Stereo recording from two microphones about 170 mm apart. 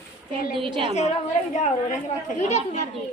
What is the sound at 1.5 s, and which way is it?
A woman's voice, 45° left (ahead or behind).